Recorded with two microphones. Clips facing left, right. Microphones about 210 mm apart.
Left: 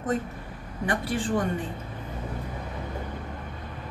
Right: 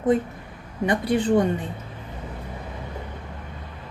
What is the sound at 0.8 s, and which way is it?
Speech, 20° right (ahead or behind).